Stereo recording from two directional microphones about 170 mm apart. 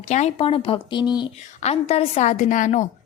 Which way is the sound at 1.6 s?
40° left (ahead or behind).